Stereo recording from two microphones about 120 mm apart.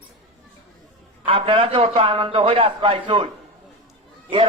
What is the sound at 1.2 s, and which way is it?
A man's voice, 45° right (ahead or behind).